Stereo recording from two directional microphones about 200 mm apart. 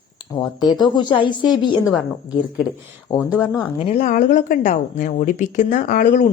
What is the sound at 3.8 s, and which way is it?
A woman's voice, 35° left (ahead or behind).